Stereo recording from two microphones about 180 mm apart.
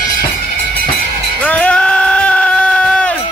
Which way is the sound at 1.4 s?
10° left (ahead or behind).